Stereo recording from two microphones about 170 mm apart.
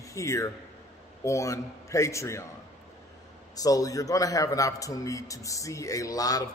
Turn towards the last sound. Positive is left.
turn(degrees=20)  # may be behind; listen again after turning